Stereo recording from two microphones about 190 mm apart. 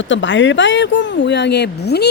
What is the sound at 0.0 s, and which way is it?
Speech, 75° left (ahead or behind).